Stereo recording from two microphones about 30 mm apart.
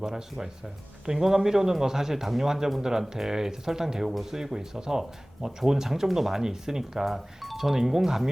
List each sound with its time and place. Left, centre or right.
0.0 s speech: centre
4.0 s speech: centre
7.0 s speech: centre